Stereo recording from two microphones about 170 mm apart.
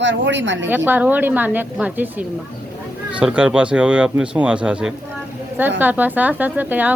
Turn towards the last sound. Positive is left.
turn(degrees=-10)  # may be behind; listen again after turning